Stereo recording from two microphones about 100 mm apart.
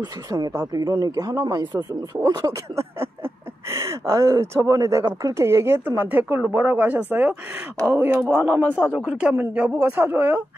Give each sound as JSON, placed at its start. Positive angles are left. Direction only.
{"t": 0.0, "sound": "speech", "side_deg": -40}